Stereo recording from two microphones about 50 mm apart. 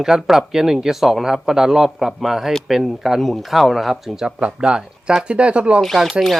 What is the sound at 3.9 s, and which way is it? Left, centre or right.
Speech, centre.